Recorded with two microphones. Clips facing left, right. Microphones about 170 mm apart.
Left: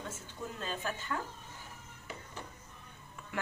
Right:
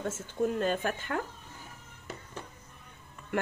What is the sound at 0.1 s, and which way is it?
Speech, 60° right (ahead or behind).